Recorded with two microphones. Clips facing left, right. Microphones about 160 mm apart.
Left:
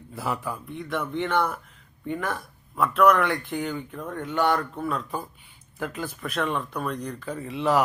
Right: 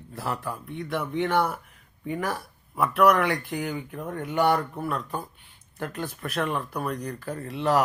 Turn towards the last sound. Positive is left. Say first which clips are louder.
# left 1 dB
turn(degrees=0)  # may be behind; listen again after turning